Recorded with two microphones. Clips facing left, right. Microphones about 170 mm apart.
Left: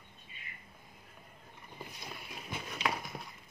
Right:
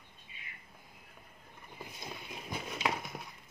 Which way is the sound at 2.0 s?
20° right (ahead or behind).